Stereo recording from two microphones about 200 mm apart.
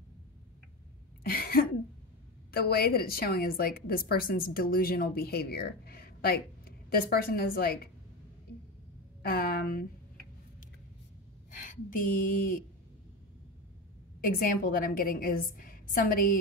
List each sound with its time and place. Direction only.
1.2 s throat clearing: 50° left (ahead or behind)
2.5 s a woman's voice: 50° left (ahead or behind)
9.2 s a woman's voice: 50° left (ahead or behind)
11.5 s speech: 45° left (ahead or behind)
14.2 s a woman's voice: 45° left (ahead or behind)